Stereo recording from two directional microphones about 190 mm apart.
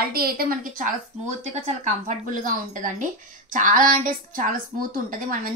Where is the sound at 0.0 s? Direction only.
55° right (ahead or behind).